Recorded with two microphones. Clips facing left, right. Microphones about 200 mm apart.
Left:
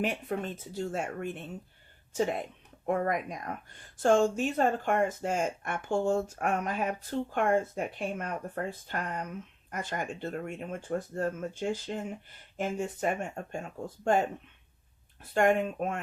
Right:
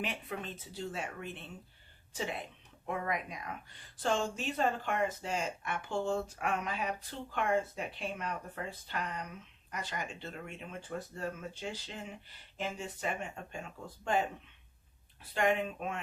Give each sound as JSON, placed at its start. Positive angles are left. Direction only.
{"t": 0.0, "sound": "speech", "side_deg": 45}